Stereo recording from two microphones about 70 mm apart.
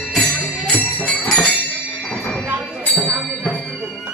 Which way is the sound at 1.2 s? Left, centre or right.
Centre.